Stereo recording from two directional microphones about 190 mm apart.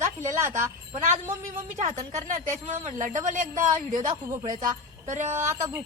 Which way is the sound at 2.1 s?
40° right (ahead or behind).